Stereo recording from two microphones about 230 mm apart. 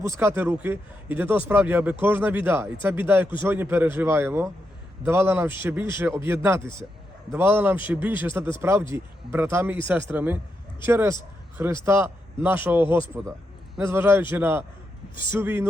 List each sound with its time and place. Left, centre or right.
0.0 s a man's voice: centre